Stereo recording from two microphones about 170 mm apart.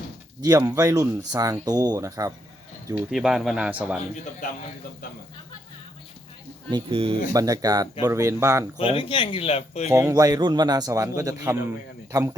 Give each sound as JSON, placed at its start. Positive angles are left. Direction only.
{"t": 0.4, "sound": "speech", "side_deg": -20}
{"t": 2.9, "sound": "speech", "side_deg": -5}
{"t": 6.7, "sound": "speech", "side_deg": -30}
{"t": 7.3, "sound": "speech", "side_deg": -20}
{"t": 8.8, "sound": "speech", "side_deg": 35}
{"t": 9.9, "sound": "speech", "side_deg": -15}